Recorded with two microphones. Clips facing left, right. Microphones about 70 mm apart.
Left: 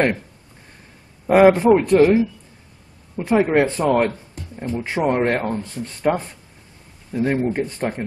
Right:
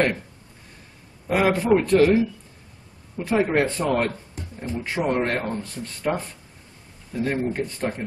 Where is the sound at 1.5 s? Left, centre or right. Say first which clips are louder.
Left 5 dB; centre.